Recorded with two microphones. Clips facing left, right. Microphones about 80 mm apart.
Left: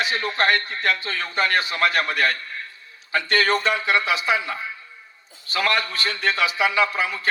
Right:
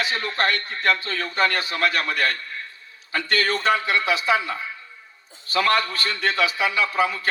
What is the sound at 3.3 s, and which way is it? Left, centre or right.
Speech, left.